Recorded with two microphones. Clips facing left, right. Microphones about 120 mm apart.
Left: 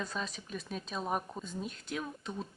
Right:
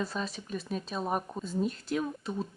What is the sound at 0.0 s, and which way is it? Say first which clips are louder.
Speech: right 4 dB; centre (ahead or behind).